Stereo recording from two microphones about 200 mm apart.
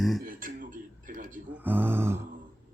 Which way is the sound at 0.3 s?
45° right (ahead or behind).